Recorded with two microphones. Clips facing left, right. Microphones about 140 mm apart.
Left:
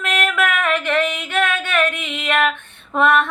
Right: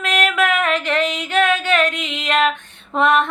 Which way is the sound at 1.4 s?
15° right (ahead or behind).